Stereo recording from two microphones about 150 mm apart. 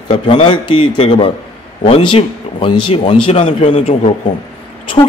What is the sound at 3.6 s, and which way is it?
Speech, 50° left (ahead or behind).